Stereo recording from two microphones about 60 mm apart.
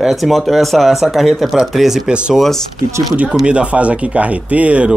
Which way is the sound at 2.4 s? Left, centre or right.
Centre.